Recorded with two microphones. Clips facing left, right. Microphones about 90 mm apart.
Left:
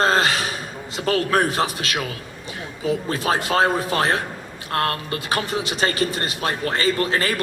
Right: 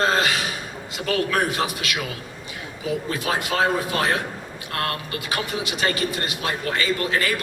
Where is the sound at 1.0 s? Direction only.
35° left (ahead or behind).